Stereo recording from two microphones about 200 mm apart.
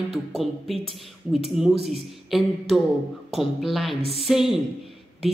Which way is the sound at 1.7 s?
30° right (ahead or behind).